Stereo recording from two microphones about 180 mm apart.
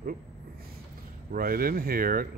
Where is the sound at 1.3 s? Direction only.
55° right (ahead or behind).